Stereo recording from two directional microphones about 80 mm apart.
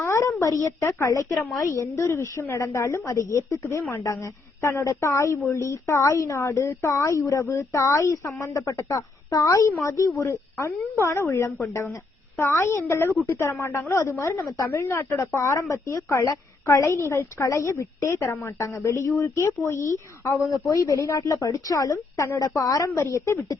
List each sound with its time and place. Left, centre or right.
0.0 s a woman's voice: left
20.5 s a woman's voice: left